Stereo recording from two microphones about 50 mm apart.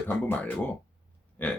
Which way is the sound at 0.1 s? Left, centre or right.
Left.